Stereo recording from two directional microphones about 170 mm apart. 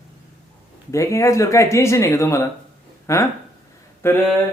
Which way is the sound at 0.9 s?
15° left (ahead or behind).